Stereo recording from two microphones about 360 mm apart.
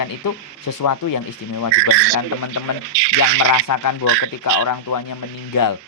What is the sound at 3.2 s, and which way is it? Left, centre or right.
Speech, left.